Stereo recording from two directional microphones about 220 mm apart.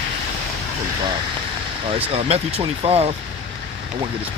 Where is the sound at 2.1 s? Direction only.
25° right (ahead or behind).